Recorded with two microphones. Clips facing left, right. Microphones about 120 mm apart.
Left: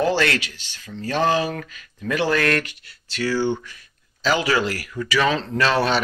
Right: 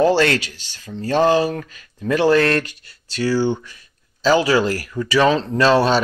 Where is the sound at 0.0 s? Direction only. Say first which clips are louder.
Right 5 dB; 30° right (ahead or behind).